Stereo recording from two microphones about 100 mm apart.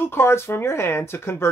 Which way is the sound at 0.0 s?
25° left (ahead or behind).